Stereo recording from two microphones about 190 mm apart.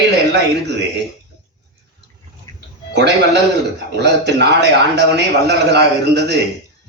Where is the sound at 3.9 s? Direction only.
60° right (ahead or behind).